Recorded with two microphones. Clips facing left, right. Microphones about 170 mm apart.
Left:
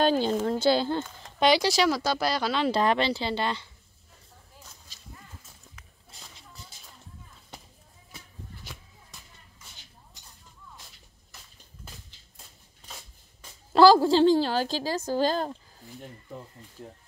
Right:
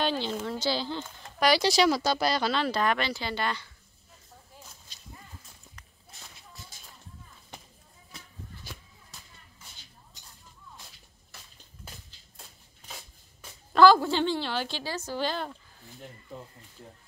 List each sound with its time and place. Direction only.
0.0 s speech: 45° left (ahead or behind)
1.6 s speech: 5° left (ahead or behind)
2.6 s speech: 30° left (ahead or behind)
13.7 s a woman's voice: 35° left (ahead or behind)